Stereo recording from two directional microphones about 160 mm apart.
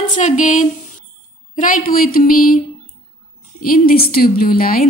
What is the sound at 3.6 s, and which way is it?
A woman's voice, 65° left (ahead or behind).